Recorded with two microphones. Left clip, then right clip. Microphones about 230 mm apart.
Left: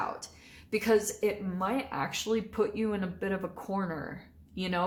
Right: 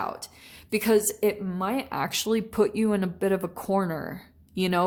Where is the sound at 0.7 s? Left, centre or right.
Right.